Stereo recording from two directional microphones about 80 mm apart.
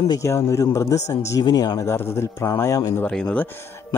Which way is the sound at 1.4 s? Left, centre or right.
Left.